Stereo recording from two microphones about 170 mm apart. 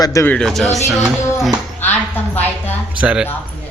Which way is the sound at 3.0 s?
5° right (ahead or behind).